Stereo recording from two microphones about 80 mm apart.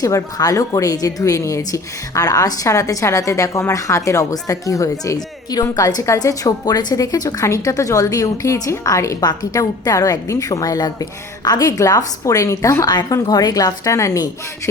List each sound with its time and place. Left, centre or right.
0.0 s a woman's voice: left
11.8 s speech: left